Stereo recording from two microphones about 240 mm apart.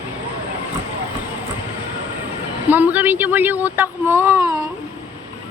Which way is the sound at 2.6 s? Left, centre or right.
Centre.